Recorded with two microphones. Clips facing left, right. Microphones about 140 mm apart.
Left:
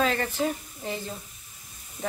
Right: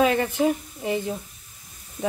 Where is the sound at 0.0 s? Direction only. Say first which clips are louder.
Right 5 dB; 15° right (ahead or behind).